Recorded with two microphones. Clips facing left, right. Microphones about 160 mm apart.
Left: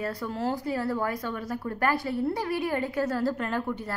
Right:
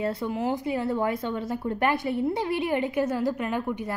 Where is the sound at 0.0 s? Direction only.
25° right (ahead or behind).